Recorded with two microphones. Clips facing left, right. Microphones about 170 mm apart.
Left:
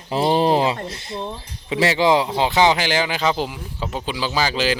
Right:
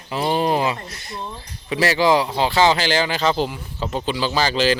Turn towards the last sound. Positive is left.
turn(degrees=10)  # may be behind; listen again after turning